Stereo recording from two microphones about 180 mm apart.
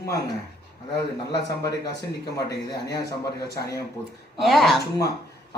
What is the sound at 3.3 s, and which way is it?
Speech, 60° left (ahead or behind).